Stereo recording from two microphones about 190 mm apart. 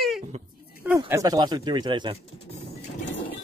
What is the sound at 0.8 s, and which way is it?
Speech, 10° right (ahead or behind).